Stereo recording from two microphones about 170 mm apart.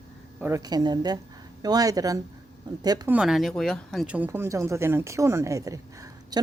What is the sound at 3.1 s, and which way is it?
Speech, 5° right (ahead or behind).